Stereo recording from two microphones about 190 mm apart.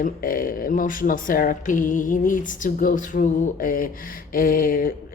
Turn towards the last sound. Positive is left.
turn(degrees=50)  # may be behind; listen again after turning